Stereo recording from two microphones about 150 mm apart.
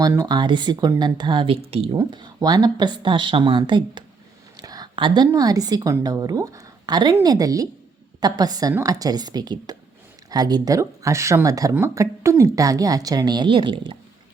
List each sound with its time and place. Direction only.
0.1 s a woman's voice: 25° right (ahead or behind)